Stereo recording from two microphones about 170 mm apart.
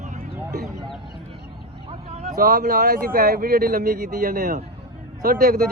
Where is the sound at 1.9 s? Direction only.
40° right (ahead or behind).